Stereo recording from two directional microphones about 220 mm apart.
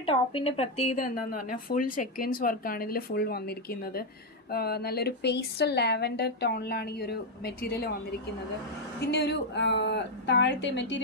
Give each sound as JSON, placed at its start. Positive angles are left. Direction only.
{"t": 0.0, "sound": "speech", "side_deg": 25}
{"t": 0.8, "sound": "a woman's voice", "side_deg": 40}
{"t": 9.0, "sound": "a woman's voice", "side_deg": 50}